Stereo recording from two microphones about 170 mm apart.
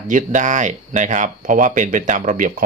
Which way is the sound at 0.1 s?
45° right (ahead or behind).